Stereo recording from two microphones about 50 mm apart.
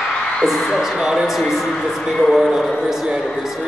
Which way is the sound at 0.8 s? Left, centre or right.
Centre.